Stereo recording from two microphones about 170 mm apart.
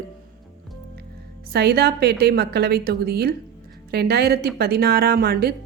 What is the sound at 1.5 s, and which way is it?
A woman's voice, 70° right (ahead or behind).